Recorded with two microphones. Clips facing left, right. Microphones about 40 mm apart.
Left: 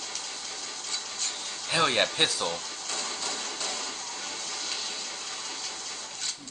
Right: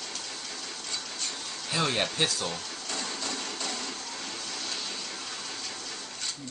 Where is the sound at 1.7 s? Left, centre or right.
Centre.